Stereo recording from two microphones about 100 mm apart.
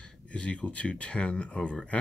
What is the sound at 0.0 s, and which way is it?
Speech, 10° left (ahead or behind).